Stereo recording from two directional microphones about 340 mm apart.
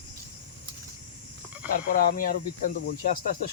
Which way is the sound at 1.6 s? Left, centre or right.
Left.